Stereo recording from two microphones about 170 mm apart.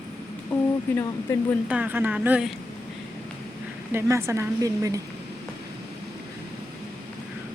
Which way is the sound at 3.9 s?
15° right (ahead or behind).